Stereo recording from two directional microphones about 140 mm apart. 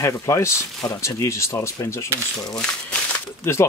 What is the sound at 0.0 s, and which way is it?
Speech, 20° left (ahead or behind).